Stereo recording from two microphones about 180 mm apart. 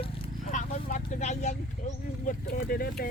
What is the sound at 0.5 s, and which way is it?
Vehicle, 45° left (ahead or behind).